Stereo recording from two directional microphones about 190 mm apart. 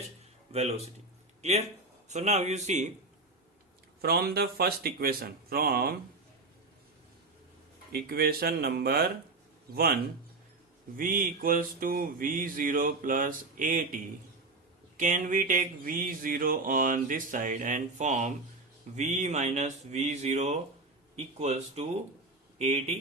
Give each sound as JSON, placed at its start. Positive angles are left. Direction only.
{"t": 0.5, "sound": "speech", "side_deg": -35}
{"t": 4.0, "sound": "mantra", "side_deg": -55}
{"t": 7.9, "sound": "mantra", "side_deg": -55}
{"t": 18.9, "sound": "speech", "side_deg": -40}